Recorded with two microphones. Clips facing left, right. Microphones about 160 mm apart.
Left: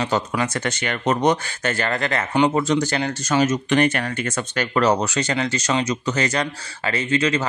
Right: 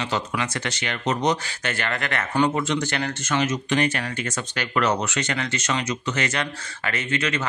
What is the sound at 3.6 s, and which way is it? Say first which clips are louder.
Speech: left 4 dB; 60° left (ahead or behind).